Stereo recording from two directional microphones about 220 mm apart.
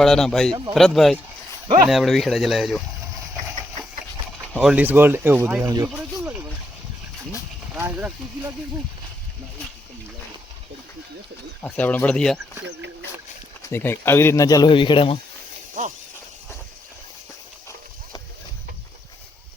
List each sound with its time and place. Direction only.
0.0 s speech: centre (ahead or behind)
4.5 s speech: 5° right (ahead or behind)
6.0 s a sound: 5° right (ahead or behind)
7.8 s speech: 10° right (ahead or behind)
11.6 s speech: 10° left (ahead or behind)
13.7 s speech: 10° left (ahead or behind)
15.8 s a sound: 35° right (ahead or behind)